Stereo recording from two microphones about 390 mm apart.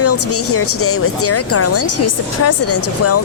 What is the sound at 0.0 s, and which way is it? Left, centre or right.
Speech, left.